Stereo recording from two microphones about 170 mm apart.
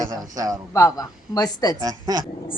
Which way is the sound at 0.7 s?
20° left (ahead or behind).